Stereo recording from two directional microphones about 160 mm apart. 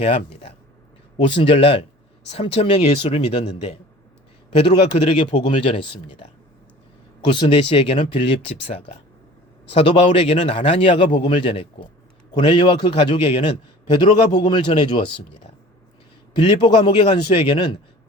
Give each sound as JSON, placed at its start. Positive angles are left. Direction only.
{"t": 0.0, "sound": "a man's voice", "side_deg": 40}
{"t": 7.3, "sound": "a man's voice", "side_deg": 30}
{"t": 16.4, "sound": "a man's voice", "side_deg": 30}